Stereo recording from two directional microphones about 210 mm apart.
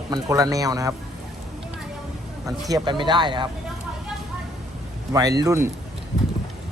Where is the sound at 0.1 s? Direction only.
15° right (ahead or behind).